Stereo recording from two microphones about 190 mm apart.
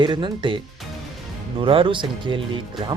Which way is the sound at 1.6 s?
30° right (ahead or behind).